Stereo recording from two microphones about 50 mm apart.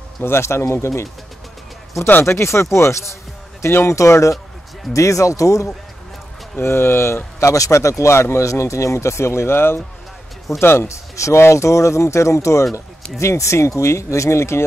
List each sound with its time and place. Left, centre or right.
0.2 s speech: left
2.2 s speech: left
6.6 s speech: left
8.0 s speech: left
10.9 s speech: left
13.2 s speech: left